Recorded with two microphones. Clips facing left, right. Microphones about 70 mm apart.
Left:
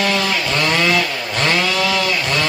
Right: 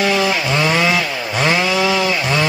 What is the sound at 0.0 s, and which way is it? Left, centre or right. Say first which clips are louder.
Chainsaw: right 2 dB; centre.